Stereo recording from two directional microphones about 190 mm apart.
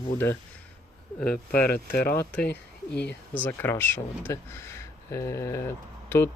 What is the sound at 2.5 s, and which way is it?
Speech, 60° left (ahead or behind).